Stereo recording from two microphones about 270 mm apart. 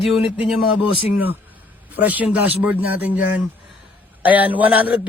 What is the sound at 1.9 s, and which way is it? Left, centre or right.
Speech, centre.